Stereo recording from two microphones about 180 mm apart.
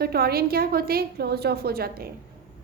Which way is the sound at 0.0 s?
60° right (ahead or behind).